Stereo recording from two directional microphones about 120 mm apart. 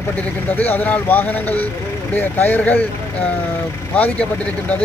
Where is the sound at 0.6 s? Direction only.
15° left (ahead or behind).